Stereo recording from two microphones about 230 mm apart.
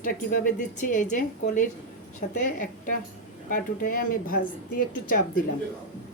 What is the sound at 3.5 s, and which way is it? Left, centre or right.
A woman's voice, left.